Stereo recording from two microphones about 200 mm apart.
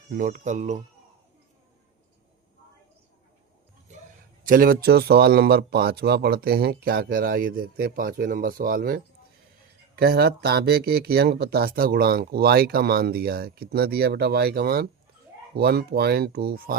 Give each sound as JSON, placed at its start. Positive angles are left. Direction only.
{"t": 0.1, "sound": "speech", "side_deg": -45}
{"t": 4.4, "sound": "speech", "side_deg": -45}